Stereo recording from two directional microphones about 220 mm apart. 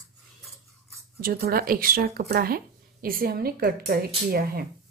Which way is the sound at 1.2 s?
40° right (ahead or behind).